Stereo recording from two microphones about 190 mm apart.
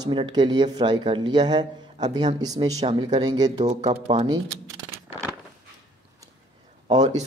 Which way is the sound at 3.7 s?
35° right (ahead or behind).